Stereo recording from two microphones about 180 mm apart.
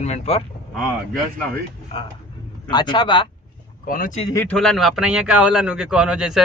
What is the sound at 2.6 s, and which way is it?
Speech, 25° left (ahead or behind).